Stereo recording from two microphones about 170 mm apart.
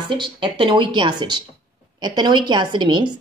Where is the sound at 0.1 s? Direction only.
30° right (ahead or behind).